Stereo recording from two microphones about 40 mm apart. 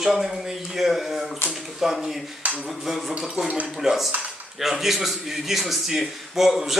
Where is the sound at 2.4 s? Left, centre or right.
Right.